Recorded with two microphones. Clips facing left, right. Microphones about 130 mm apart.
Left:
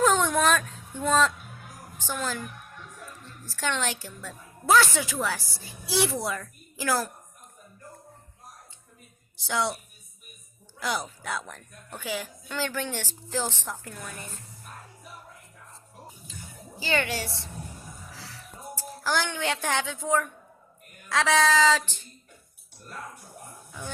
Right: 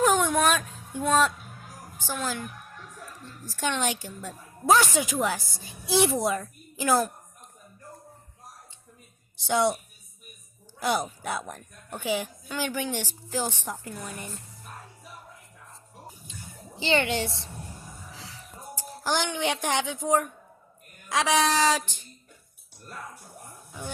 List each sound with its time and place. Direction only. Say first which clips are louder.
0.0 s baby cry: even; 10° right (ahead or behind)
2.1 s a woman's voice: even; 5° right (ahead or behind)
3.4 s a woman's voice: right 2 dB; 15° right (ahead or behind)
9.4 s a woman's voice: right 5 dB; 20° right (ahead or behind)
10.8 s a woman's voice: right 4 dB; 25° right (ahead or behind)
16.7 s a woman's voice: right 3 dB; 25° right (ahead or behind)
18.1 s a sound: even; 20° right (ahead or behind)
18.8 s a woman's voice: even; 20° right (ahead or behind)